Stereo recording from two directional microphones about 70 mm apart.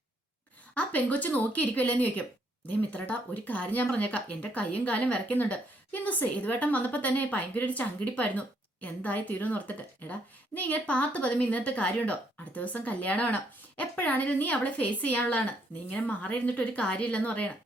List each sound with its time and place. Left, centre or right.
0.7 s speech: centre